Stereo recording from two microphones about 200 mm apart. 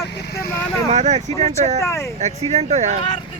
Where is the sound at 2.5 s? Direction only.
35° right (ahead or behind).